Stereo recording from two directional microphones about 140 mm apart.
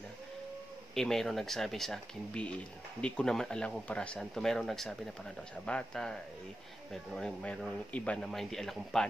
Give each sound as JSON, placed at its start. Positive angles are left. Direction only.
{"t": 0.9, "sound": "speech", "side_deg": 5}